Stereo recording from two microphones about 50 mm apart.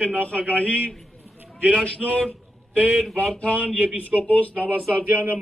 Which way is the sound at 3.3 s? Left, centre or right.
Left.